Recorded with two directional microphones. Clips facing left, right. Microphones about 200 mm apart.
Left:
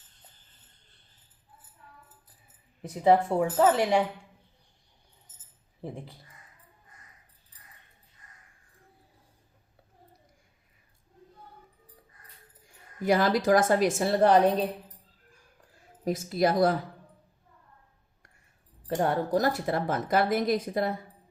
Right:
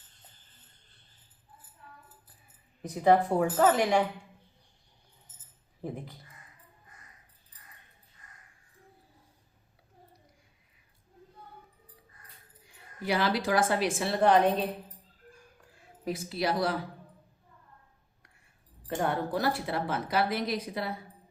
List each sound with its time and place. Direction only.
2.8 s speech: 25° left (ahead or behind)
5.8 s speech: 25° left (ahead or behind)
12.6 s a woman's voice: 45° left (ahead or behind)
16.0 s speech: 45° left (ahead or behind)
18.9 s speech: 40° left (ahead or behind)